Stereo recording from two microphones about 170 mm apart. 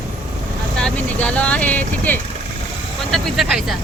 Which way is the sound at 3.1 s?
Centre (ahead or behind).